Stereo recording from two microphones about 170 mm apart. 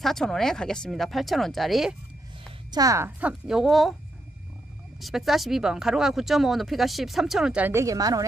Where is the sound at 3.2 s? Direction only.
5° right (ahead or behind).